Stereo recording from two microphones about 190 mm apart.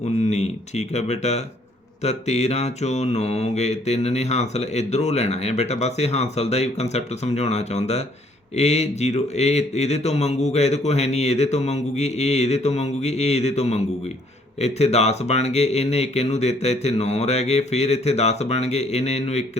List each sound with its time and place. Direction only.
0.3 s mantra: 35° left (ahead or behind)